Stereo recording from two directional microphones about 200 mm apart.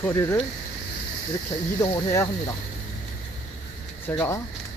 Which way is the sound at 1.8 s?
15° left (ahead or behind).